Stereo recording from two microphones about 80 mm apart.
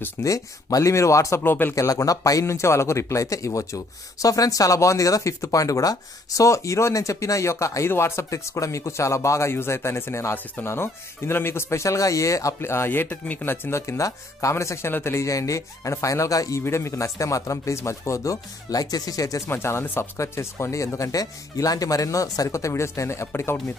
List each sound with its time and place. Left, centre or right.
0.2 s speech: left
1.4 s speech: left
1.8 s speech: left
13.7 s speech: left
19.5 s speech: left